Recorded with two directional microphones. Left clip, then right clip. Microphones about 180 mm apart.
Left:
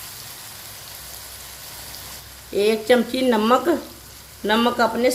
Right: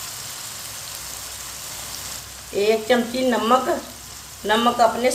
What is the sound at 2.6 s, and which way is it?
Speech, 60° left (ahead or behind).